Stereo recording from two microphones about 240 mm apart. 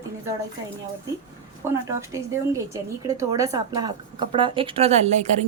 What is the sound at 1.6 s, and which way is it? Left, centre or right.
A woman's voice, centre.